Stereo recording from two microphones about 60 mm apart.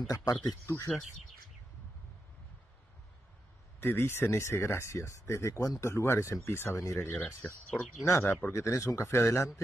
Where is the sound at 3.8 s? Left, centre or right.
Left.